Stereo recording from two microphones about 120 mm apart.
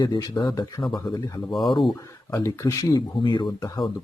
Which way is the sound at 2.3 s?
25° left (ahead or behind).